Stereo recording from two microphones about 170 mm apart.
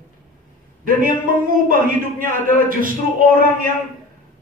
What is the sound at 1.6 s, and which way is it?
A man's voice, 55° right (ahead or behind).